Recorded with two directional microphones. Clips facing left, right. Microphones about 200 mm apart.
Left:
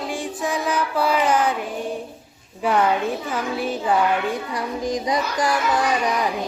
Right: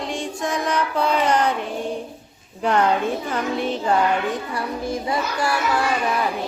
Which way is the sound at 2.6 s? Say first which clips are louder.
Even; 5° left (ahead or behind).